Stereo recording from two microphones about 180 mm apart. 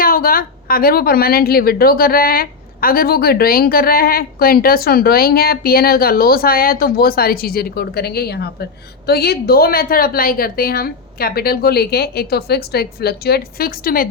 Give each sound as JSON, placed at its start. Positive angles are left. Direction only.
{"t": 0.0, "sound": "a woman's voice", "side_deg": 55}